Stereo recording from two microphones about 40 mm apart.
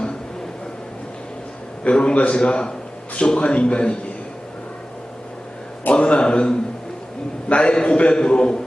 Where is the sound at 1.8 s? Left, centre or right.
Left.